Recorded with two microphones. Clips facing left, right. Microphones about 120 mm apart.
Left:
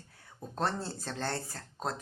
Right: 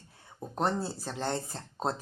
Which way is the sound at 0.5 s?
15° right (ahead or behind).